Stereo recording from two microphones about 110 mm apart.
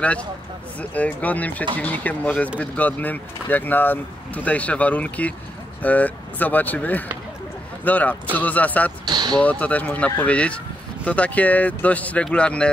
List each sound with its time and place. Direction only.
0.7 s speech: 15° left (ahead or behind)
9.0 s speech: 40° right (ahead or behind)
9.4 s speech: 15° left (ahead or behind)